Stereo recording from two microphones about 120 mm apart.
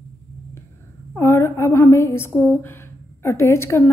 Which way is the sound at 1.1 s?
20° left (ahead or behind).